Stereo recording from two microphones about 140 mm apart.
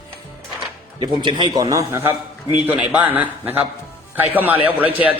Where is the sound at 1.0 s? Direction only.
35° right (ahead or behind).